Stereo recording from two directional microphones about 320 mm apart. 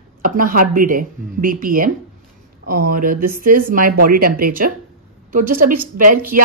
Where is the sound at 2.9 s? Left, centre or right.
Right.